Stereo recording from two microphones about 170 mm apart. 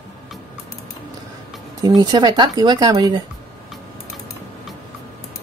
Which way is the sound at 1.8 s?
25° right (ahead or behind).